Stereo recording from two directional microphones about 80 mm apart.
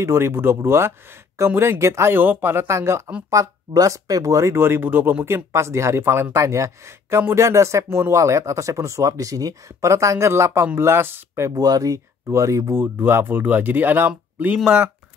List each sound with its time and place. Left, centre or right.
0.0 s speech: right
3.3 s speech: right
11.5 s speech: right
12.7 s speech: right